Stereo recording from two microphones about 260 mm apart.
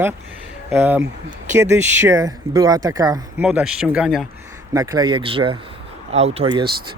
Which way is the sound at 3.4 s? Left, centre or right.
Centre.